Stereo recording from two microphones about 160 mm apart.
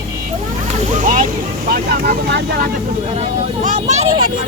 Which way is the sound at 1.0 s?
50° right (ahead or behind).